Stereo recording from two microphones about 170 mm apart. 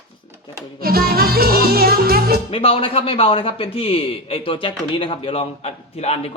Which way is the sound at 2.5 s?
35° left (ahead or behind).